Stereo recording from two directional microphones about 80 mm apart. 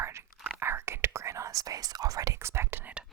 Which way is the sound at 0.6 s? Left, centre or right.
Right.